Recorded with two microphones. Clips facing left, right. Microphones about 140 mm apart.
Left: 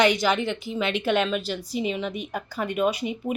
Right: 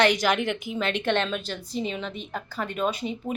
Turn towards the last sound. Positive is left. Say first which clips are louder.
# left 3 dB
turn(degrees=10)  # may be behind; listen again after turning